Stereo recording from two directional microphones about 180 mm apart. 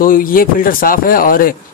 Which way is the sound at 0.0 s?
50° left (ahead or behind).